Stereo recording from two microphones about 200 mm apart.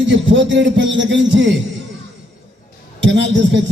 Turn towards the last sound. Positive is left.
turn(degrees=-65)  # may be behind; listen again after turning